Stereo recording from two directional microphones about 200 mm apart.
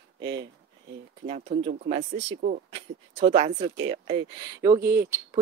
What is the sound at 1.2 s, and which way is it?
Speech, 30° right (ahead or behind).